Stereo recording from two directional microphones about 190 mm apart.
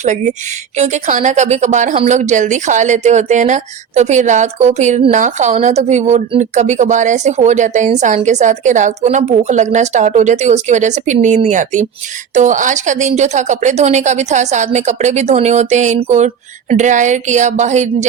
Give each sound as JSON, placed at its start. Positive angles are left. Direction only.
{"t": 0.0, "sound": "a woman's voice", "side_deg": -40}